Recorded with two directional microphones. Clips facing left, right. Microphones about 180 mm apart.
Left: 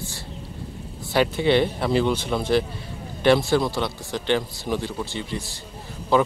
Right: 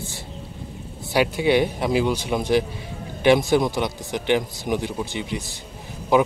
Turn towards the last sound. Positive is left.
turn(degrees=-15)  # may be behind; listen again after turning